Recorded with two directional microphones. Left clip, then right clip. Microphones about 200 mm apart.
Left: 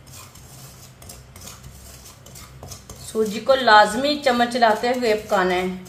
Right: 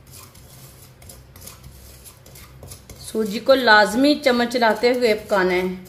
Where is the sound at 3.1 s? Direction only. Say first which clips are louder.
Right 1 dB; 45° right (ahead or behind).